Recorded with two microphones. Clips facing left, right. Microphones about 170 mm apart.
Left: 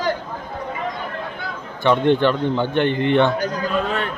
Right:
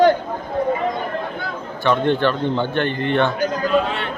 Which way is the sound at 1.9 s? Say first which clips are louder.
Left 2 dB; 15° left (ahead or behind).